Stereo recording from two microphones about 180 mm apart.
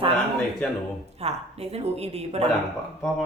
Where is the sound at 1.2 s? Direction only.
35° right (ahead or behind).